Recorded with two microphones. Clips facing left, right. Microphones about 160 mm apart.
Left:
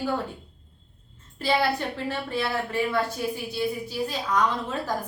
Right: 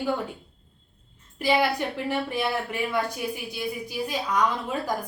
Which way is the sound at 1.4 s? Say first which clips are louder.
Right 1 dB; 15° right (ahead or behind).